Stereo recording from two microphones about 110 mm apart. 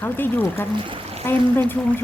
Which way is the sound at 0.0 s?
20° left (ahead or behind).